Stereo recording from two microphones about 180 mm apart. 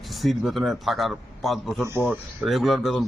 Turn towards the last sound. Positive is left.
turn(degrees=0)  # may be behind; listen again after turning